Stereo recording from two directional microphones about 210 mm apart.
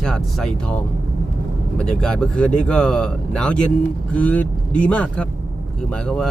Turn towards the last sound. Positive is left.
turn(degrees=5)  # may be behind; listen again after turning